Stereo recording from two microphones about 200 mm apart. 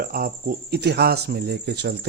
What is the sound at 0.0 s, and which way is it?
Speech, 45° right (ahead or behind).